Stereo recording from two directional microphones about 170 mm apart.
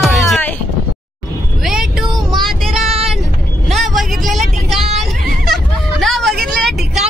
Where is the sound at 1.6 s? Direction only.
5° right (ahead or behind).